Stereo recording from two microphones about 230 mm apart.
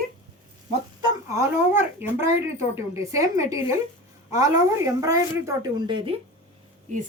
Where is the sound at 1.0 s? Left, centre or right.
Centre.